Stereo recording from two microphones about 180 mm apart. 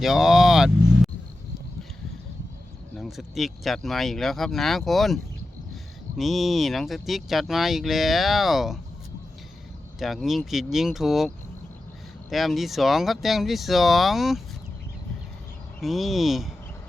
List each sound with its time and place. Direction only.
0.0 s vehicle: centre (ahead or behind)
3.0 s speech: centre (ahead or behind)
10.0 s speech: centre (ahead or behind)
12.3 s speech: centre (ahead or behind)
15.8 s speech: centre (ahead or behind)